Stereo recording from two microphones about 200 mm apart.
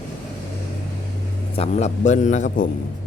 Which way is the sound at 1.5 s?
30° left (ahead or behind).